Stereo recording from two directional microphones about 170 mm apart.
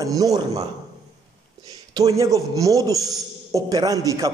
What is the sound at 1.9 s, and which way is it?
A man's voice, 20° right (ahead or behind).